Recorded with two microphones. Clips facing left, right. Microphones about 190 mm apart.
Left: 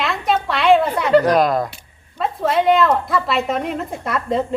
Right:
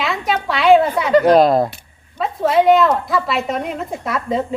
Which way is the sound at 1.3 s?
30° right (ahead or behind).